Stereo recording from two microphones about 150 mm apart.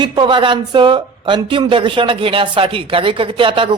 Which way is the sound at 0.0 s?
30° right (ahead or behind).